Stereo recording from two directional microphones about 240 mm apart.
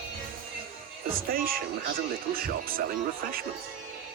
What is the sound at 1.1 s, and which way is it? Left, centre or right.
Speech, right.